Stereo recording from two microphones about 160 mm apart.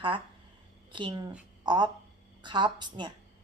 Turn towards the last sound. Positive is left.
turn(degrees=-30)  # may be behind; listen again after turning